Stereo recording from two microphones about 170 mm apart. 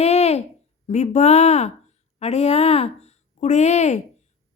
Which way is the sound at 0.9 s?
45° left (ahead or behind).